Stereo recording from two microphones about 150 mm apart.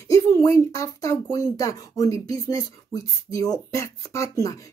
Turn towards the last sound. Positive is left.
turn(degrees=20)  # may be behind; listen again after turning